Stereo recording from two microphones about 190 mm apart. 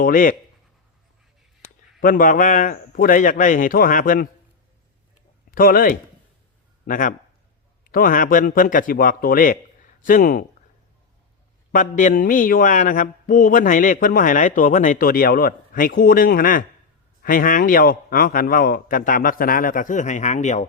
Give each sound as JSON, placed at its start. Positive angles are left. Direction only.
{"t": 0.0, "sound": "speech", "side_deg": 45}
{"t": 2.0, "sound": "speech", "side_deg": 45}
{"t": 5.5, "sound": "a man's voice", "side_deg": 50}
{"t": 11.7, "sound": "speech", "side_deg": 40}